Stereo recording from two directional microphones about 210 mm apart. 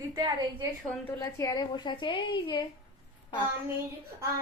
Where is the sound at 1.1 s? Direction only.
15° left (ahead or behind).